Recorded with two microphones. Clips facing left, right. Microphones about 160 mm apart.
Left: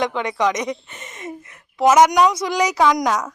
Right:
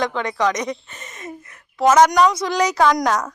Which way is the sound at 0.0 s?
20° left (ahead or behind).